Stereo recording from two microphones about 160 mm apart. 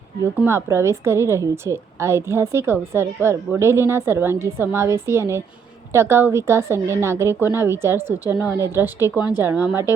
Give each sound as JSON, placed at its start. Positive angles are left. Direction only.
{"t": 0.4, "sound": "a woman's voice", "side_deg": -15}